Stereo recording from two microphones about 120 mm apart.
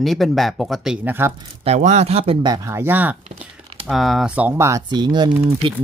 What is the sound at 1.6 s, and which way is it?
Speech, 70° right (ahead or behind).